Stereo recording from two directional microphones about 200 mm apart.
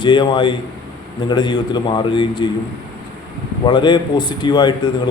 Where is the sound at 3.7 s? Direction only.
25° left (ahead or behind).